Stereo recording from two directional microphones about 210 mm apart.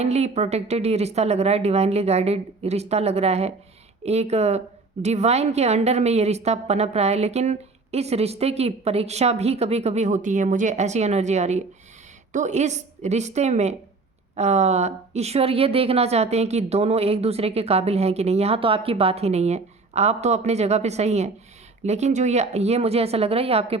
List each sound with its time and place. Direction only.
0.0 s a woman's voice: 30° right (ahead or behind)